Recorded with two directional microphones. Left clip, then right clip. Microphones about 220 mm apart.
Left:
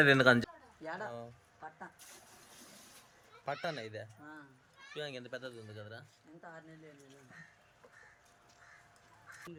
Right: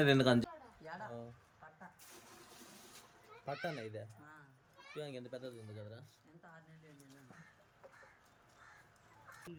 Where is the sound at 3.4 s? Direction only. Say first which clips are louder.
Left 4 dB; 5° left (ahead or behind).